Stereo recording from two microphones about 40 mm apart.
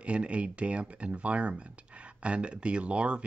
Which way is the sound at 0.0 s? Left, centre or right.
Right.